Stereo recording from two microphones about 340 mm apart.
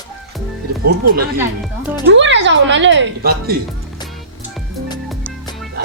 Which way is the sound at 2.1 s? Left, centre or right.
Right.